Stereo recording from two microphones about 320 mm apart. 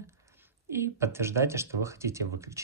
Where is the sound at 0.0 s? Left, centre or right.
Centre.